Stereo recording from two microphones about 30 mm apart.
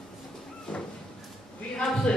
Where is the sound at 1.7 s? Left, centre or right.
Left.